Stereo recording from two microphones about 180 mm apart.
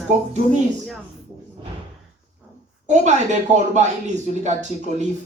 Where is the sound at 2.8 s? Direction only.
40° right (ahead or behind).